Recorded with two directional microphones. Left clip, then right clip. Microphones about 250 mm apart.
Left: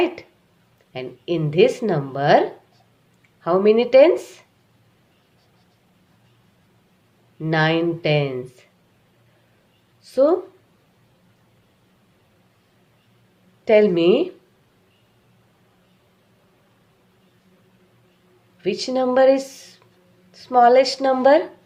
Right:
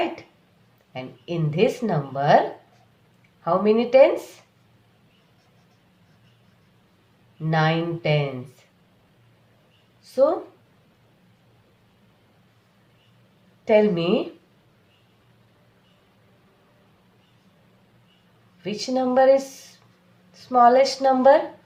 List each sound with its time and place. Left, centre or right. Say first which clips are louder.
0.9 s speech: left 5 dB; left
3.4 s speech: left 4 dB; left
7.4 s speech: left 3 dB; left
10.0 s a sound: left 2 dB; left
13.7 s speech: left 4 dB; left
18.6 s a woman's voice: left 4 dB; left